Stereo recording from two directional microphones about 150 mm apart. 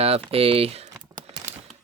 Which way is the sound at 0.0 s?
40° right (ahead or behind).